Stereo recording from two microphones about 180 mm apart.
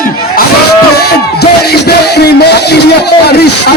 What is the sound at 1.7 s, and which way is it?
Speech, 60° left (ahead or behind).